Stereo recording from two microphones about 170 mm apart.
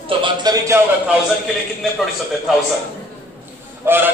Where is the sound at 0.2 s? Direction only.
25° right (ahead or behind).